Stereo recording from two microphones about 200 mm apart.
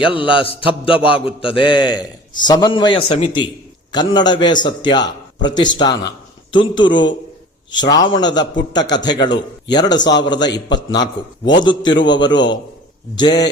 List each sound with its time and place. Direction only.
0.0 s a man's voice: 25° left (ahead or behind)